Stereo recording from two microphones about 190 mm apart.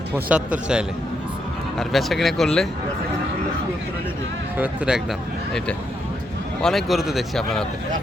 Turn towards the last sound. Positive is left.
turn(degrees=0)  # may be behind; listen again after turning